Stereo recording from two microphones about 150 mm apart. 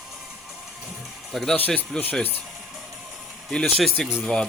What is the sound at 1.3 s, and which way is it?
Speech, centre (ahead or behind).